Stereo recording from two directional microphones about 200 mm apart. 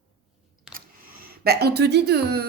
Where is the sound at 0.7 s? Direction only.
45° right (ahead or behind).